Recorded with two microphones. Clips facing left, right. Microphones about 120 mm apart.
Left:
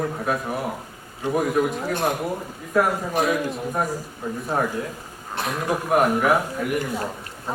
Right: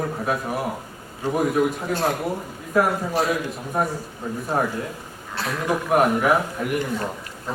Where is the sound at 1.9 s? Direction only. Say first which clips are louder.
Even; 15° left (ahead or behind).